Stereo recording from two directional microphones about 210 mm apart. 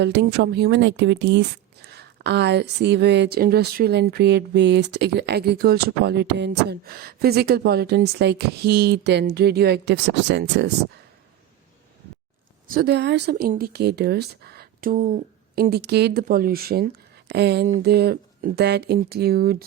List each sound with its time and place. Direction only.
0.0 s speech: 55° right (ahead or behind)
12.6 s speech: 45° right (ahead or behind)